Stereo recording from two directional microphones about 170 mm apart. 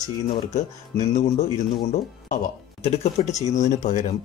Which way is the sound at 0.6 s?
45° left (ahead or behind).